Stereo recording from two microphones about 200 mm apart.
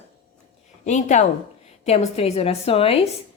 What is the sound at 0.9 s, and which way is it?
A woman's voice, 35° left (ahead or behind).